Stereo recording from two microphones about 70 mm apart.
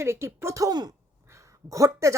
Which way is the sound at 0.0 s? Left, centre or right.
Right.